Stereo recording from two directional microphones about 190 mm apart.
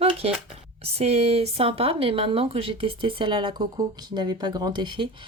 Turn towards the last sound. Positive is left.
turn(degrees=-25)  # may be behind; listen again after turning